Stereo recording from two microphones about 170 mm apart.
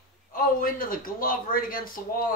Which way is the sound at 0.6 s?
55° left (ahead or behind).